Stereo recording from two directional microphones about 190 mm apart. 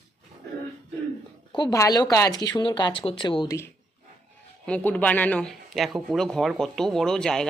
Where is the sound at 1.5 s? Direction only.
20° left (ahead or behind).